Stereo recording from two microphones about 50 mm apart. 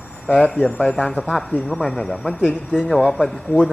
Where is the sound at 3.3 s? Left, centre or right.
Centre.